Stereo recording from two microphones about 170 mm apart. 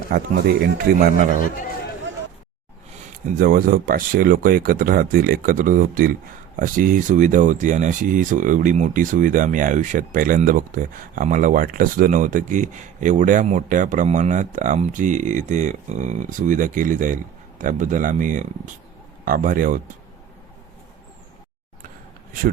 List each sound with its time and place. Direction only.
0.1 s speech: 65° right (ahead or behind)
0.9 s speech: 55° right (ahead or behind)
3.3 s speech: 55° right (ahead or behind)